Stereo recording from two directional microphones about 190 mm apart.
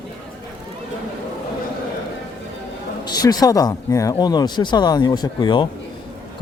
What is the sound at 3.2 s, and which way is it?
Speech, 20° left (ahead or behind).